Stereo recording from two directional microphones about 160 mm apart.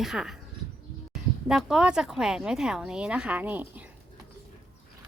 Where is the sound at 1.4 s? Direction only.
5° right (ahead or behind).